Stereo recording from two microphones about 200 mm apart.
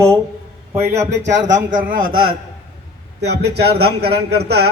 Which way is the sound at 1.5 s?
45° right (ahead or behind).